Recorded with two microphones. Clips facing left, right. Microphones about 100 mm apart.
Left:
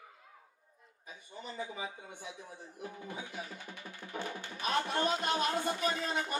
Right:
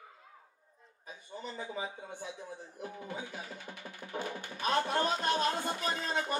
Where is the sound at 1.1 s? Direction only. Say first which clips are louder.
Right 3 dB; 35° right (ahead or behind).